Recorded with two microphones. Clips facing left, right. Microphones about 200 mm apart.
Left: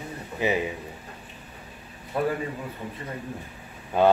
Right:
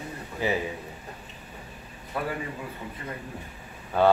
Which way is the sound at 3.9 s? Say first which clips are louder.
Left 1 dB; 15° left (ahead or behind).